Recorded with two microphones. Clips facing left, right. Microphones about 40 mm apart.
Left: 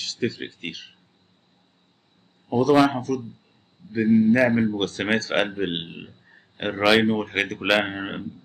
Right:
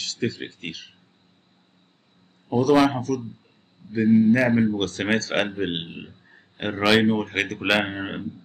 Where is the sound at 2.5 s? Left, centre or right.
Centre.